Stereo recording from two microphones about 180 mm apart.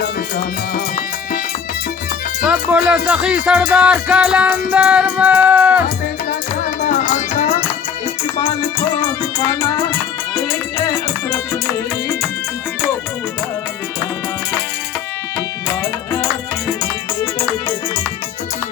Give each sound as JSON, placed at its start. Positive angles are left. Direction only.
{"t": 0.3, "sound": "music", "side_deg": 50}
{"t": 2.4, "sound": "speech", "side_deg": -5}
{"t": 3.1, "sound": "music", "side_deg": -5}
{"t": 6.7, "sound": "music", "side_deg": 45}
{"t": 10.3, "sound": "music", "side_deg": 20}
{"t": 15.4, "sound": "music", "side_deg": 15}